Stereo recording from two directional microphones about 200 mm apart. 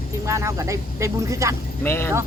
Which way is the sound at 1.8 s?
10° left (ahead or behind).